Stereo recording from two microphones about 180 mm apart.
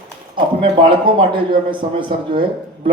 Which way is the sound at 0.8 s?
30° right (ahead or behind).